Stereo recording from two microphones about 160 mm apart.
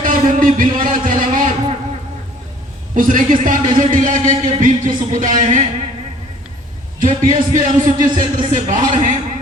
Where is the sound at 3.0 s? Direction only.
55° right (ahead or behind).